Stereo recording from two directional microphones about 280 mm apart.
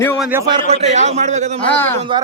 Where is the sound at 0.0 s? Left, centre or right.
Centre.